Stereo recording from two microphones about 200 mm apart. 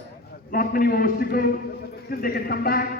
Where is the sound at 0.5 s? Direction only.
45° left (ahead or behind).